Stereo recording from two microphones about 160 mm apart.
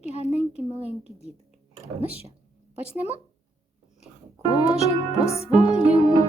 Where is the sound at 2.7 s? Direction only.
10° right (ahead or behind).